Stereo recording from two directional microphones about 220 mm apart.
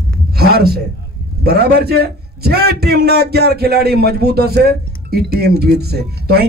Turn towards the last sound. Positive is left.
turn(degrees=-45)  # may be behind; listen again after turning